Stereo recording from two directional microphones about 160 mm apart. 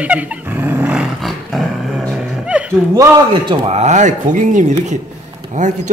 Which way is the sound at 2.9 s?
25° right (ahead or behind).